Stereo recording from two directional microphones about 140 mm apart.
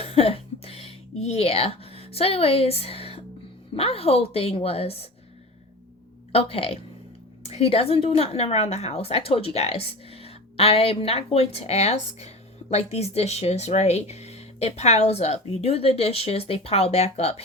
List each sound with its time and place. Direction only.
0.0 s a woman's voice: 45° left (ahead or behind)
6.3 s a woman's voice: 45° left (ahead or behind)